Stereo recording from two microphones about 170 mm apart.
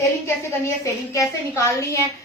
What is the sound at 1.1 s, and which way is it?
Speech, 15° left (ahead or behind).